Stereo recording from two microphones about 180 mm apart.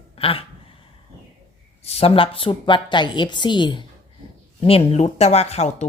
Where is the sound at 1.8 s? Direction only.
35° left (ahead or behind).